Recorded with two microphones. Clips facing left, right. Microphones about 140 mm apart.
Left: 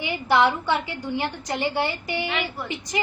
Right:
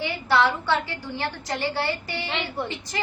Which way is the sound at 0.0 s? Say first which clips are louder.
Left 2 dB; 15° left (ahead or behind).